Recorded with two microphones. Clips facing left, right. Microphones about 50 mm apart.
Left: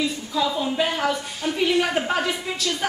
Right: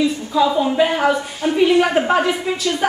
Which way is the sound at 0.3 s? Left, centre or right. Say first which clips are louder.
Right 8 dB; centre.